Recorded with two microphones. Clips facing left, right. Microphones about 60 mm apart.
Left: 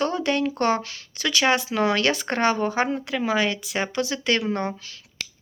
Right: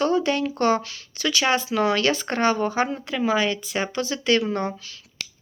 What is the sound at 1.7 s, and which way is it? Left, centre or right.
Speech, left.